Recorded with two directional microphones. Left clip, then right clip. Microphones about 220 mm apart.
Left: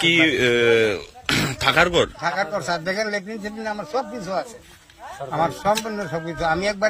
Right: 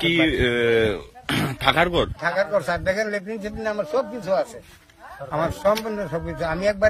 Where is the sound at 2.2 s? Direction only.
25° right (ahead or behind).